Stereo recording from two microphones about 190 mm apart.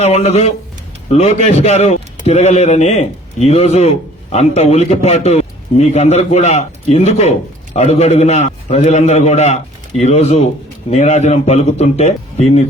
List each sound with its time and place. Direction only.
0.0 s speech: 35° left (ahead or behind)